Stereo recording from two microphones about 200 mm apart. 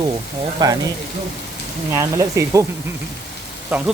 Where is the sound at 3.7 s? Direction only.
5° right (ahead or behind).